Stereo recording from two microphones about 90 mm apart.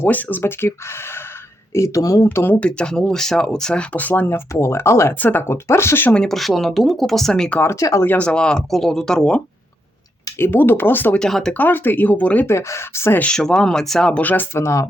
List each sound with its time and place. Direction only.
0.0 s speech: 20° left (ahead or behind)
6.1 s speech: 5° left (ahead or behind)
7.6 s speech: 35° left (ahead or behind)
8.0 s speech: 15° left (ahead or behind)
10.3 s speech: 25° left (ahead or behind)
11.2 s speech: 5° left (ahead or behind)
11.5 s speech: 20° left (ahead or behind)
12.5 s speech: 30° left (ahead or behind)
13.2 s speech: 5° left (ahead or behind); by 14.8 s 30° left (ahead or behind)